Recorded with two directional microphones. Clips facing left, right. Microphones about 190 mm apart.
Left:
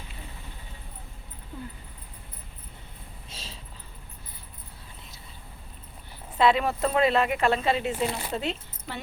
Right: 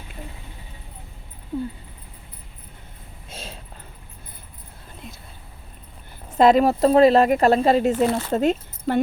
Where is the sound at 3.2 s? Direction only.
55° right (ahead or behind).